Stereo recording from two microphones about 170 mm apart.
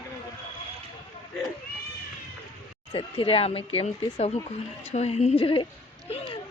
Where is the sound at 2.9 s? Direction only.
30° left (ahead or behind).